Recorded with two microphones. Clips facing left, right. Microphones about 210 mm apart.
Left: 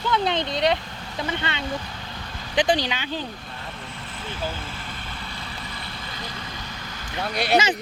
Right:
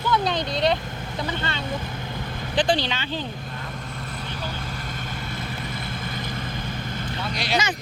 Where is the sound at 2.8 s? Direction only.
10° left (ahead or behind).